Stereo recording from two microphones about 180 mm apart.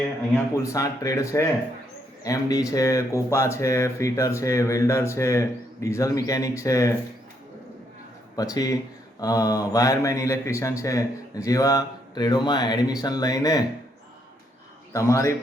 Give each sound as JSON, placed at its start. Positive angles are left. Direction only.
{"t": 0.3, "sound": "speech", "side_deg": 15}
{"t": 8.4, "sound": "a man's voice", "side_deg": 20}
{"t": 14.9, "sound": "speech", "side_deg": 15}